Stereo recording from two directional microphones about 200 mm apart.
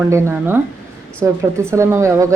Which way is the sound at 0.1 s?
10° right (ahead or behind).